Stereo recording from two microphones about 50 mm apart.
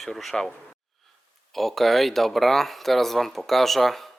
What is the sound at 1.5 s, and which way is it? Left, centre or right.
Speech, centre.